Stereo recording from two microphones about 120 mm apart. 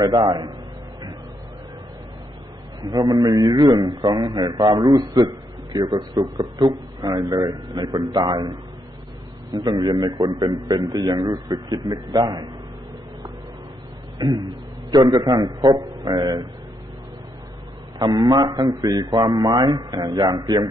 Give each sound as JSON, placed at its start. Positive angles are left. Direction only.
{"t": 0.0, "sound": "a man's voice", "side_deg": -35}
{"t": 2.8, "sound": "a man's voice", "side_deg": -35}
{"t": 14.1, "sound": "a man's voice", "side_deg": -35}
{"t": 17.9, "sound": "a man's voice", "side_deg": -35}